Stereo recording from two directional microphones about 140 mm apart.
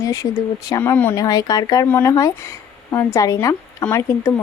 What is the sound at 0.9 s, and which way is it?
Speech, 15° left (ahead or behind).